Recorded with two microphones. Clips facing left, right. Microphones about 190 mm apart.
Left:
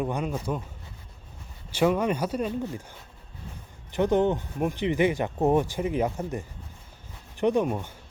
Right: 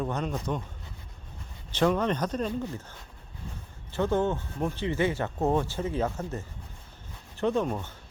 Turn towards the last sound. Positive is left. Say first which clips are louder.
# left 3 dB
turn(degrees=10)  # may be behind; listen again after turning